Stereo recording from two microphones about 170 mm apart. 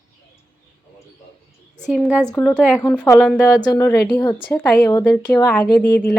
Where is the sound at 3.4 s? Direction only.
20° left (ahead or behind).